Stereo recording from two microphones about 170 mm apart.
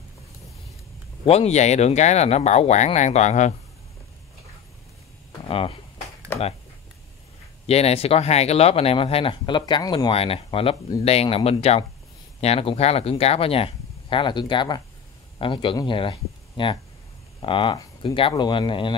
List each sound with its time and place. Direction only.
1.2 s speech: 35° left (ahead or behind)
5.5 s speech: 35° left (ahead or behind)
7.6 s speech: 35° left (ahead or behind)